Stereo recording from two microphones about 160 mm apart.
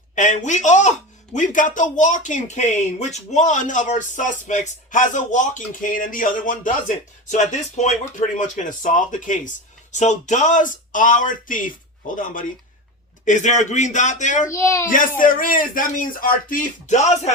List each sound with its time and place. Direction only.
0.2 s speech: 50° left (ahead or behind)
14.5 s a child's voice: 20° left (ahead or behind)
14.8 s speech: 55° left (ahead or behind)